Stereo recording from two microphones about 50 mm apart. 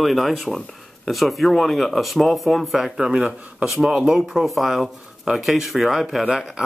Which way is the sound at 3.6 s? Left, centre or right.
Centre.